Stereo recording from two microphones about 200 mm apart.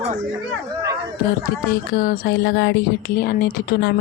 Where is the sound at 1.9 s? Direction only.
45° left (ahead or behind).